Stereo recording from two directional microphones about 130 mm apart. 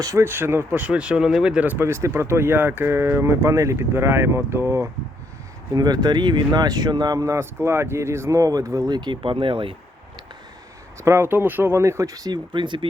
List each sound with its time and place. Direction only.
0.0 s speech: 25° right (ahead or behind)
5.7 s speech: 30° right (ahead or behind)
11.0 s speech: 20° right (ahead or behind); by 12.9 s 35° right (ahead or behind)